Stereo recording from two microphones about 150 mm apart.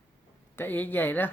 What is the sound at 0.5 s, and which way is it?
Speech, 10° left (ahead or behind).